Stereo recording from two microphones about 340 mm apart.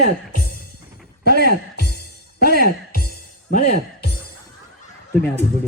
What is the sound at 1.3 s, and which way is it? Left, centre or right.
Speech, right.